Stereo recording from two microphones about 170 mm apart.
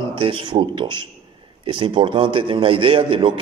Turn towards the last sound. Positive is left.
turn(degrees=-30)  # may be behind; listen again after turning